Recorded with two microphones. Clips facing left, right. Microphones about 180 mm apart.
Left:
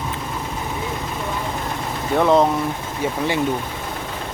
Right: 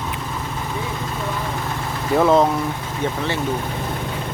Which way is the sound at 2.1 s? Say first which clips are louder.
Even; centre (ahead or behind).